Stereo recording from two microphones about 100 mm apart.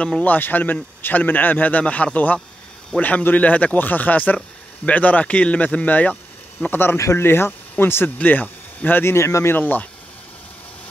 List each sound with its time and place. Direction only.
0.0 s speech: 15° left (ahead or behind)